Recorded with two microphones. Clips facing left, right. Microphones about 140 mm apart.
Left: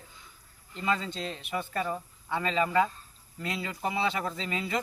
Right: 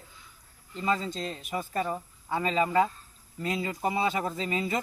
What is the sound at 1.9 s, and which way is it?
Speech, 10° right (ahead or behind).